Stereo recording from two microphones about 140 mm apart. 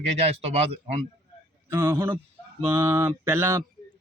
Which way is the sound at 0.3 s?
45° right (ahead or behind).